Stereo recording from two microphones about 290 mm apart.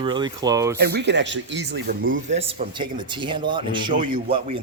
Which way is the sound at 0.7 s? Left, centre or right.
Right.